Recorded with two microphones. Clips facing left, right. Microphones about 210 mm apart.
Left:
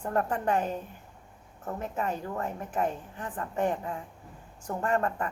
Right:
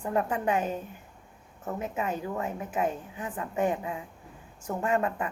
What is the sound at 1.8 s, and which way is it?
A woman's voice, 5° right (ahead or behind).